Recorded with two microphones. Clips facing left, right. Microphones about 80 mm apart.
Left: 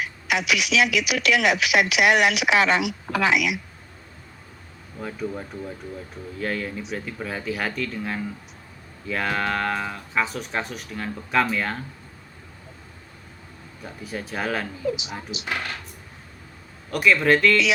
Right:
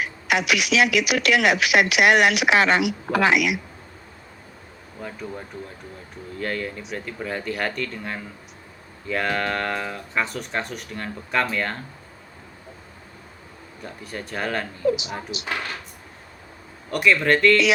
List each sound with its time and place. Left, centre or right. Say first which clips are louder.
0.0 s speech: right 2 dB; right
4.9 s speech: left 3 dB; centre
13.8 s speech: left 1 dB; centre
16.9 s speech: even; centre